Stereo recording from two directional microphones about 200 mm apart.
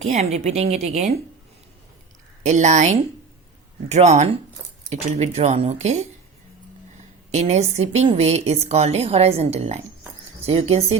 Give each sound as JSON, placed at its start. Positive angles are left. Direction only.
{"t": 0.0, "sound": "a woman's voice", "side_deg": -35}
{"t": 2.4, "sound": "a woman's voice", "side_deg": -35}
{"t": 7.3, "sound": "a woman's voice", "side_deg": -35}